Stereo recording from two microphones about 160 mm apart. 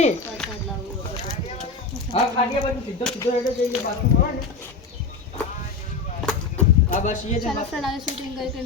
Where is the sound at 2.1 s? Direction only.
40° left (ahead or behind).